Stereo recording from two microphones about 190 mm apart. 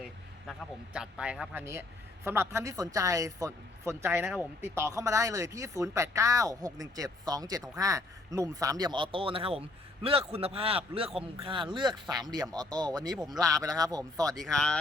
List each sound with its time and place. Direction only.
0.9 s speech: 5° right (ahead or behind)
14.3 s speech: centre (ahead or behind)